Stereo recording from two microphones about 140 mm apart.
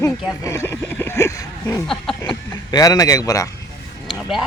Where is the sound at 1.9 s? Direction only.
5° left (ahead or behind).